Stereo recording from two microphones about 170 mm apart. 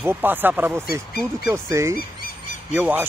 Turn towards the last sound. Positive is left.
turn(degrees=-10)  # may be behind; listen again after turning